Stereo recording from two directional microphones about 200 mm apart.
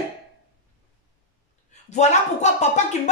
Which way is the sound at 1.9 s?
35° left (ahead or behind).